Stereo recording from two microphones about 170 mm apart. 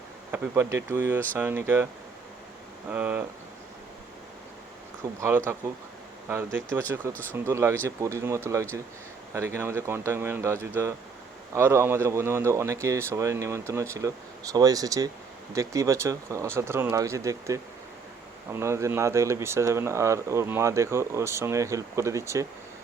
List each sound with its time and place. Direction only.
0.3 s speech: 10° right (ahead or behind)
2.9 s speech: 10° right (ahead or behind)
5.0 s speech: 20° right (ahead or behind)
6.2 s speech: 15° right (ahead or behind)